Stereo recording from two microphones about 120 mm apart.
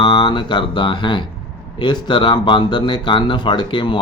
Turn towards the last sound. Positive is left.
turn(degrees=40)  # may be behind; listen again after turning